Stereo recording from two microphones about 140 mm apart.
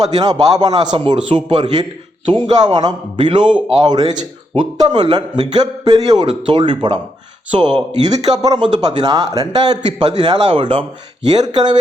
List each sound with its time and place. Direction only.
0.0 s a man's voice: 30° right (ahead or behind)
2.5 s a man's voice: 30° right (ahead or behind)